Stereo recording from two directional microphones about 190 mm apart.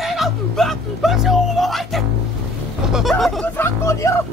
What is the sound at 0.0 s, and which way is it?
Speech, centre (ahead or behind).